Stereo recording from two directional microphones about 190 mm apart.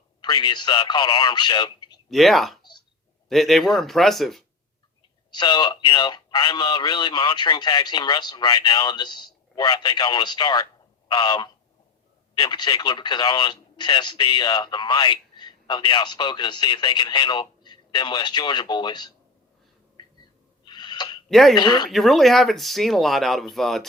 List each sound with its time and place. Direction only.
0.2 s speech: 25° left (ahead or behind)
2.0 s speech: centre (ahead or behind)
5.3 s speech: 25° left (ahead or behind)
20.7 s a sound: 25° left (ahead or behind)
21.2 s speech: centre (ahead or behind)
21.5 s speech: 25° left (ahead or behind)
21.8 s speech: centre (ahead or behind)